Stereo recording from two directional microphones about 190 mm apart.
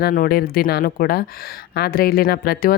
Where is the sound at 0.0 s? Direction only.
50° left (ahead or behind).